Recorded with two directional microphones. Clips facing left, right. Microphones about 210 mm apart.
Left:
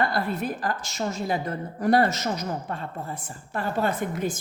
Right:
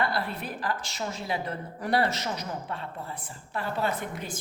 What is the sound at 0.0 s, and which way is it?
A woman's voice, 45° left (ahead or behind).